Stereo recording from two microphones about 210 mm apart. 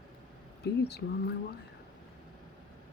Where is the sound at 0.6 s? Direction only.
50° left (ahead or behind).